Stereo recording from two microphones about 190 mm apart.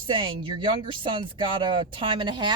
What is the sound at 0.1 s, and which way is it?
Speech, 25° right (ahead or behind).